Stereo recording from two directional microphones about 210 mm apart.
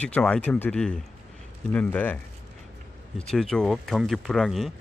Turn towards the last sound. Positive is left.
turn(degrees=0)  # may be behind; listen again after turning